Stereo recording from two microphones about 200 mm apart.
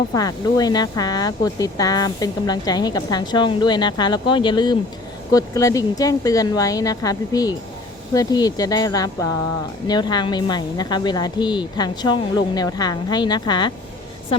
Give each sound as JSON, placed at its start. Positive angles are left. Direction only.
{"t": 0.1, "sound": "speech", "side_deg": 20}